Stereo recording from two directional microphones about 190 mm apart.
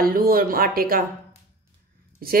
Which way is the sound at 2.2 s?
50° right (ahead or behind).